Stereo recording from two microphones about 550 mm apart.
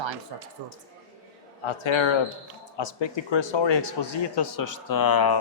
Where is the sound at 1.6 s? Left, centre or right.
Left.